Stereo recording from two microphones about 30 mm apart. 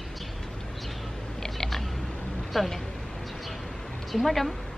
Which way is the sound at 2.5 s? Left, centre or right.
Centre.